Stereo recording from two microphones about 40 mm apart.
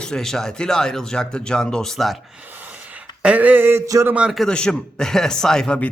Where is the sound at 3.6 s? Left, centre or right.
Right.